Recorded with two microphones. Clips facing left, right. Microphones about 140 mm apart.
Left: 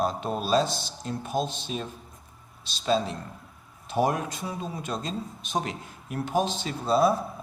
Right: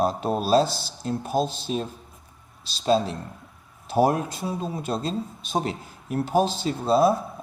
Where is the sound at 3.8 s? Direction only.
5° right (ahead or behind).